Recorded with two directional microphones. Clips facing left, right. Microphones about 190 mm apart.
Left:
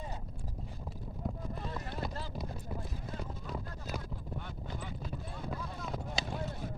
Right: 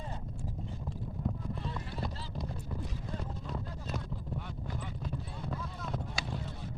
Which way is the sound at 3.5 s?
Centre (ahead or behind).